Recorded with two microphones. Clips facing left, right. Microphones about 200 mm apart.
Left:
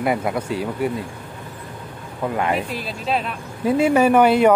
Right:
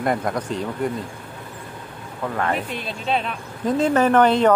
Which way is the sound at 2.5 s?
5° left (ahead or behind).